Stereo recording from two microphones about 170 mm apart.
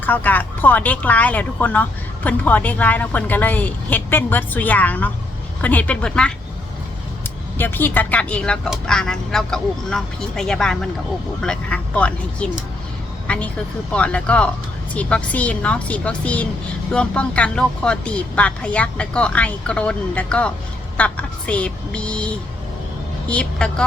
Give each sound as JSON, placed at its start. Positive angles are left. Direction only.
{"t": 0.0, "sound": "speech", "side_deg": 10}
{"t": 7.6, "sound": "a woman's voice", "side_deg": 10}